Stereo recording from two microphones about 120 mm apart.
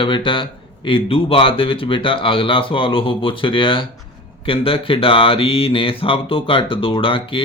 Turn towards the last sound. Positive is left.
turn(degrees=50)  # may be behind; listen again after turning